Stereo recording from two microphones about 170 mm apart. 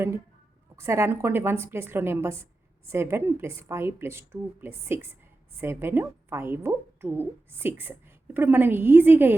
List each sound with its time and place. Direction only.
0.8 s a woman's voice: 15° right (ahead or behind)